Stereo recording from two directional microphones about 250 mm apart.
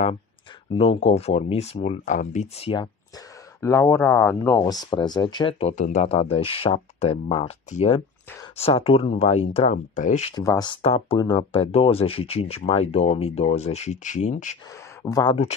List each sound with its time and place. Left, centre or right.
0.7 s speech: left
10.3 s speech: centre
15.0 s speech: centre